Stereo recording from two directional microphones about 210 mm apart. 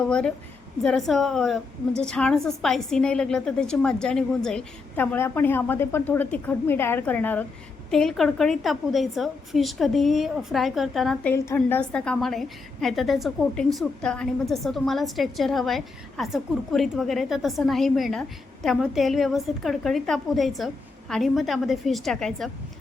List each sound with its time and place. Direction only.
0.0 s a woman's voice: 5° left (ahead or behind)